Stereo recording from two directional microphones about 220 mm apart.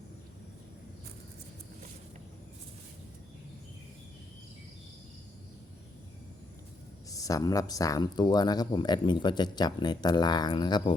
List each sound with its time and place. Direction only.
7.1 s speech: 15° left (ahead or behind)